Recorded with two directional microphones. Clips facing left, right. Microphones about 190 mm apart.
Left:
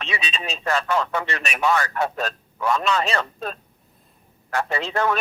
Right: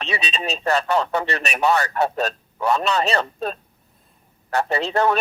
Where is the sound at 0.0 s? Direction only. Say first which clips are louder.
Right 3 dB; 35° right (ahead or behind).